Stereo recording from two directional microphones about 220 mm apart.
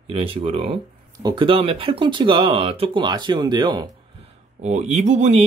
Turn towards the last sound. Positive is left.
turn(degrees=-30)  # may be behind; listen again after turning